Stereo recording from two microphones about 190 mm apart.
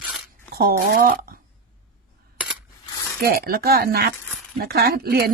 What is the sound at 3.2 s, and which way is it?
A woman's voice, 55° right (ahead or behind).